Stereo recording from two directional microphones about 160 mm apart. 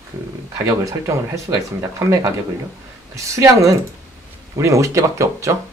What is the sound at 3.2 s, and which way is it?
Speech, 20° right (ahead or behind).